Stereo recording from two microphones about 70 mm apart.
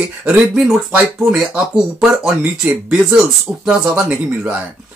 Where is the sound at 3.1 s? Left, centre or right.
Centre.